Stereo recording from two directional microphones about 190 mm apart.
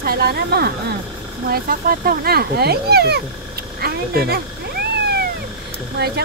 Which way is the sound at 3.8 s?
55° right (ahead or behind).